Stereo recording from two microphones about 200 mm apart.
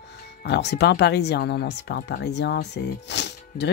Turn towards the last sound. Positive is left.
turn(degrees=60)  # may be behind; listen again after turning